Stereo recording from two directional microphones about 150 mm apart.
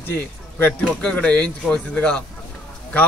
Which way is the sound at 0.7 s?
Centre (ahead or behind).